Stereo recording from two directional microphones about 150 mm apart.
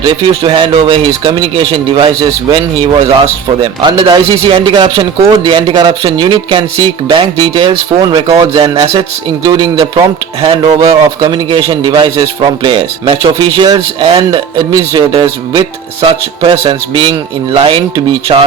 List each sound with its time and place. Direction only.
0.0 s speech: 35° right (ahead or behind)
3.6 s speech: 30° right (ahead or behind)